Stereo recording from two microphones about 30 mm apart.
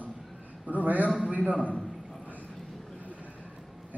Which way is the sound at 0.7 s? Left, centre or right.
Right.